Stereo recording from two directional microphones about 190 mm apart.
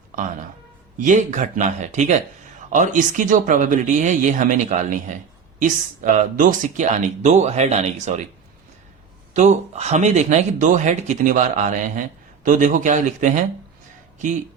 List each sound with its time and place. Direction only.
0.9 s speech: 40° right (ahead or behind)
9.3 s speech: 40° right (ahead or behind)